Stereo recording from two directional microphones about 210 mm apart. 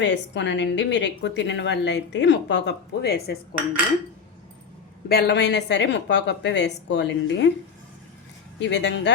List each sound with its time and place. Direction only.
0.0 s a woman's voice: 60° left (ahead or behind)
5.0 s a woman's voice: 50° left (ahead or behind)
8.5 s a woman's voice: 55° left (ahead or behind)